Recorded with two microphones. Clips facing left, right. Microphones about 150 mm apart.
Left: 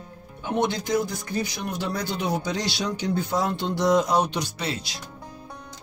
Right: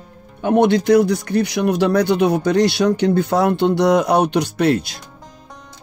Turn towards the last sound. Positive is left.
turn(degrees=-55)  # may be behind; listen again after turning